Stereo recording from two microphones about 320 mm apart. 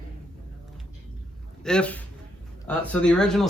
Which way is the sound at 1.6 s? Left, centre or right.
Centre.